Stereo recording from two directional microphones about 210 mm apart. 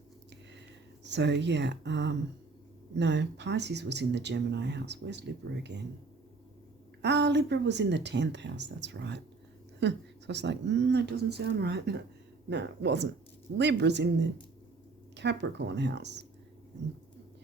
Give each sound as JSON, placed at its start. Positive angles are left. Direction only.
{"t": 1.0, "sound": "speech", "side_deg": -55}
{"t": 7.0, "sound": "speech", "side_deg": -55}